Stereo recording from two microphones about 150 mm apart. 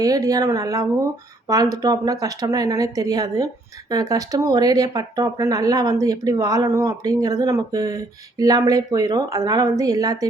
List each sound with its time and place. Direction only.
0.0 s a woman's voice: 25° right (ahead or behind)